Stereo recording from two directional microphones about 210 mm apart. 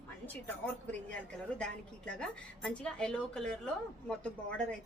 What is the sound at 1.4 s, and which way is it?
A woman's voice, 5° left (ahead or behind).